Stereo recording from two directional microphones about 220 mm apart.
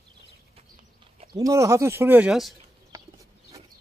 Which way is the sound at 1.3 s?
15° right (ahead or behind).